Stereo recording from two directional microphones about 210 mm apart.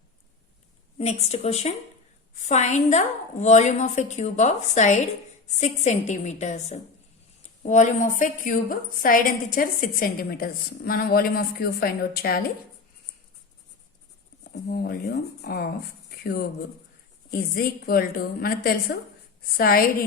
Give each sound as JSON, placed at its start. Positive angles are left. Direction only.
{"t": 0.9, "sound": "a woman's voice", "side_deg": 30}
{"t": 14.7, "sound": "a woman's voice", "side_deg": 45}
{"t": 17.3, "sound": "a woman's voice", "side_deg": 45}